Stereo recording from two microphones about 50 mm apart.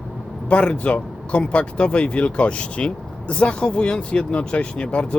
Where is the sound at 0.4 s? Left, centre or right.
Left.